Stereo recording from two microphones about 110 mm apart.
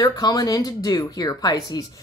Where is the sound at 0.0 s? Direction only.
35° left (ahead or behind).